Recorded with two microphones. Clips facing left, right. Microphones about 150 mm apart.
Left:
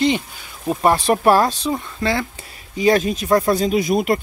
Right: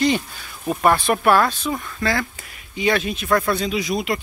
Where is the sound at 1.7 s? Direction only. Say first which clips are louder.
Left 2 dB; 25° left (ahead or behind).